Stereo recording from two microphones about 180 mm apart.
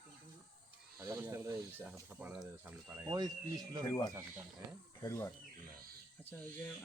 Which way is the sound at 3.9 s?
20° left (ahead or behind).